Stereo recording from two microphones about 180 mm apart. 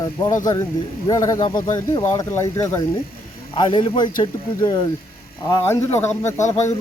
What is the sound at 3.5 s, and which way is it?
Speech, 25° left (ahead or behind).